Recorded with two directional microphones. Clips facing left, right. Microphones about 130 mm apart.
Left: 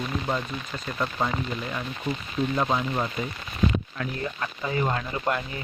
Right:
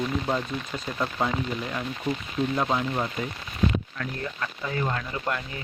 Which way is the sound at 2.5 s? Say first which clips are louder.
Left 1 dB; centre (ahead or behind).